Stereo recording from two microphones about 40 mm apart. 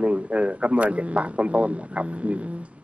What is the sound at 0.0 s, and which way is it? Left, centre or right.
A man's voice, right.